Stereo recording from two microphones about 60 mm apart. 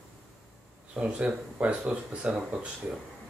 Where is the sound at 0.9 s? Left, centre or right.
Centre.